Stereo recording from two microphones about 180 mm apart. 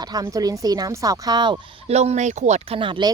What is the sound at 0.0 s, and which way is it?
Speech, 20° right (ahead or behind).